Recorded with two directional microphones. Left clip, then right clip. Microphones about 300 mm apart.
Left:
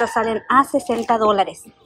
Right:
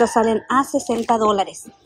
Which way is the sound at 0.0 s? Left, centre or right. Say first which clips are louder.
Right 3 dB; centre.